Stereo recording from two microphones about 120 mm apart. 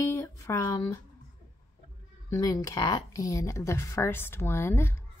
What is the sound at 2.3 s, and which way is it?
Speech, 30° left (ahead or behind).